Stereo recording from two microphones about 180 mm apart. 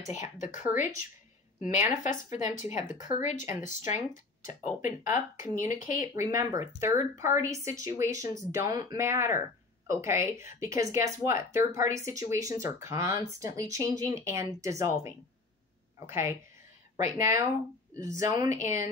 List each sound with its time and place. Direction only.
0.1 s speech: 45° left (ahead or behind)
5.9 s speech: 20° right (ahead or behind)